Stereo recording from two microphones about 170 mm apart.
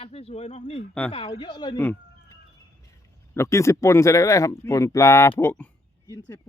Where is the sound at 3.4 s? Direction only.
15° left (ahead or behind).